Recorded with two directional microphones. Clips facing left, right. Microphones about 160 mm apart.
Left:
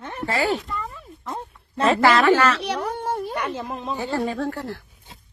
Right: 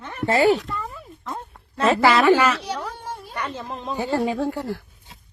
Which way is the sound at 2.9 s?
60° left (ahead or behind).